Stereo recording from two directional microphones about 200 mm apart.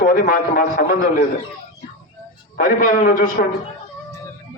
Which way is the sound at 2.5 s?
45° left (ahead or behind).